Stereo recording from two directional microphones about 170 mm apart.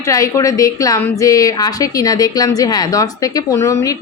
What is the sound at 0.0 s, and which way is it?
A woman's voice, 20° left (ahead or behind).